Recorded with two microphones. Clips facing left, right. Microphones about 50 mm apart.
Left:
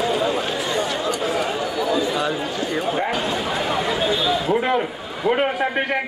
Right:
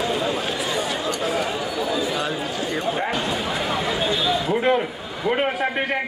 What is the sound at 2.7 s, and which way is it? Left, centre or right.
Speech, centre.